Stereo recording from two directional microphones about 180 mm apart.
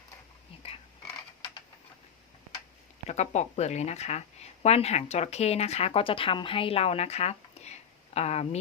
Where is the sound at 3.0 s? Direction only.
40° left (ahead or behind).